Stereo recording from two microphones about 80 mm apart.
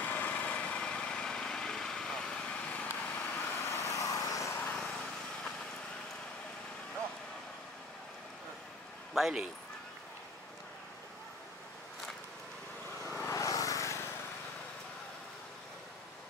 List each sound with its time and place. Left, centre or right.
0.1 s vehicle: centre
3.6 s vehicle: left
4.6 s vehicle: centre
9.1 s speech: centre
13.2 s vehicle: left